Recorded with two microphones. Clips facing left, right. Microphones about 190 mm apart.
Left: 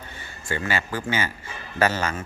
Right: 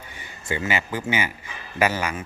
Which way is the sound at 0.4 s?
20° right (ahead or behind).